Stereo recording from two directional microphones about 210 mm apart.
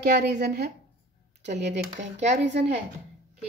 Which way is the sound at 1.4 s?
35° right (ahead or behind).